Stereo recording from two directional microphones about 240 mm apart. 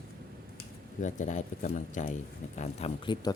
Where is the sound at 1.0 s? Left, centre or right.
Left.